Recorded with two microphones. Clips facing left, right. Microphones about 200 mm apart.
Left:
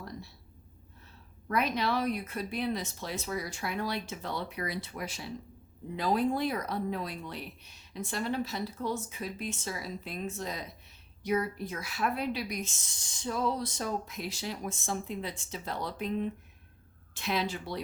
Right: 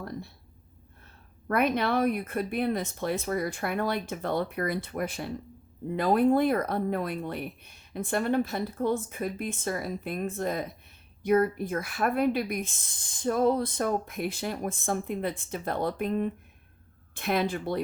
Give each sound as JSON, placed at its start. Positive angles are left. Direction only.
{"t": 1.0, "sound": "speech", "side_deg": -55}